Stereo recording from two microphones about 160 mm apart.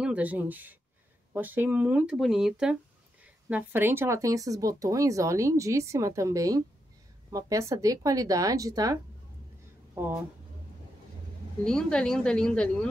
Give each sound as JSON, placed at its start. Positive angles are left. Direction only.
{"t": 0.0, "sound": "speech", "side_deg": -10}
{"t": 11.6, "sound": "speech", "side_deg": 5}